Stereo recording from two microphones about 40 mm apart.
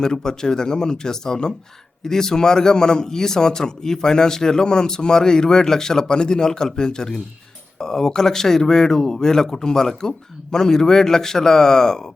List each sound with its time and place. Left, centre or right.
0.0 s a man's voice: centre